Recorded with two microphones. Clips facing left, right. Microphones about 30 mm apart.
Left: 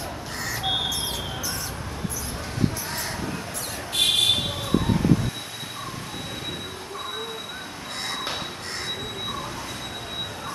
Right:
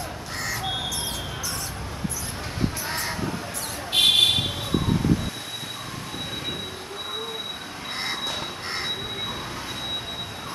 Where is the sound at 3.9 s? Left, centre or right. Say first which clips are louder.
Right 4 dB; right.